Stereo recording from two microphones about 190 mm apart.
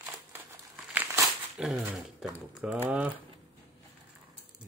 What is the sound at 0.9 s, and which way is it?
Crumpling, 5° right (ahead or behind).